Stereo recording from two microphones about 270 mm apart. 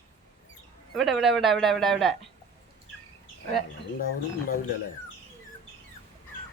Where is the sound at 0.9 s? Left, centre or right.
Centre.